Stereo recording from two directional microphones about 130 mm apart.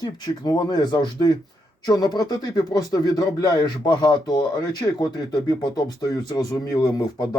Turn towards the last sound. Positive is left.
turn(degrees=30)  # may be behind; listen again after turning